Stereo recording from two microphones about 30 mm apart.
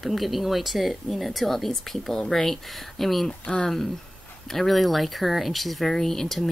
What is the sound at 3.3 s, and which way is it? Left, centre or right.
Speech, left.